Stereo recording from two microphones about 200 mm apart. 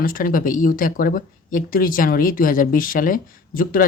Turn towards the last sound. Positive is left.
turn(degrees=45)  # may be behind; listen again after turning